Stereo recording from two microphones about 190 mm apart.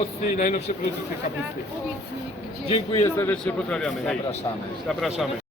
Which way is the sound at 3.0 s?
10° left (ahead or behind).